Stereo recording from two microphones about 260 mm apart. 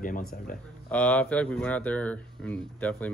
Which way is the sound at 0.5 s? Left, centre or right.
Left.